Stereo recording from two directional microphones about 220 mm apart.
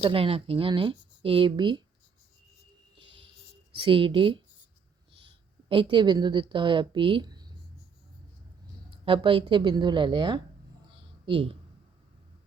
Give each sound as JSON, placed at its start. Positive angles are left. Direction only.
{"t": 0.0, "sound": "speech", "side_deg": -25}
{"t": 3.8, "sound": "a woman's voice", "side_deg": -25}
{"t": 9.0, "sound": "speech", "side_deg": -25}
{"t": 10.9, "sound": "a sound", "side_deg": -25}